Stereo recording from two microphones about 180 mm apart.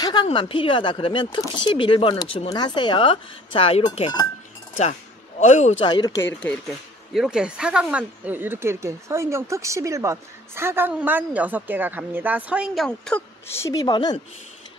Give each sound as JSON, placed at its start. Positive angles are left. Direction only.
{"t": 0.0, "sound": "speech", "side_deg": 25}
{"t": 5.4, "sound": "a man's voice", "side_deg": 40}
{"t": 5.9, "sound": "speech", "side_deg": 20}
{"t": 7.2, "sound": "speech", "side_deg": -5}